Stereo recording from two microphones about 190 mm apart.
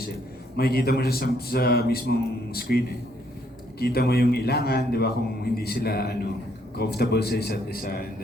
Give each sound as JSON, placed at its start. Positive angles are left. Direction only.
{"t": 0.5, "sound": "a man's voice", "side_deg": 55}